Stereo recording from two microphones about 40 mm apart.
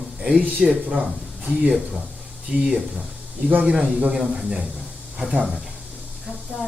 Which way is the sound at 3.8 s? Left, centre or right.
Right.